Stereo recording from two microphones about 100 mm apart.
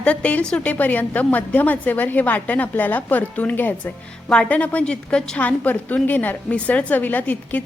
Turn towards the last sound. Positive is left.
turn(degrees=15)  # may be behind; listen again after turning